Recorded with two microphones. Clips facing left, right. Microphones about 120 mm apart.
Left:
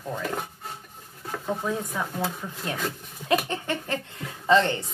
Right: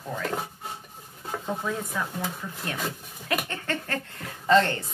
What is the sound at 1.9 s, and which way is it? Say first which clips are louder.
Speech: left 2 dB; 15° left (ahead or behind).